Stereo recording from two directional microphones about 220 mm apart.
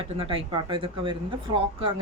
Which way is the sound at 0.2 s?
25° right (ahead or behind).